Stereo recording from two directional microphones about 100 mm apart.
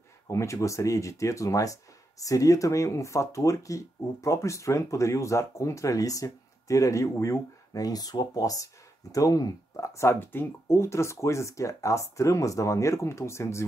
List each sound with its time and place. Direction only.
0.3 s speech: 30° left (ahead or behind)